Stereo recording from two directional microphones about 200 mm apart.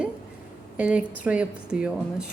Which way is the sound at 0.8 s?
5° right (ahead or behind).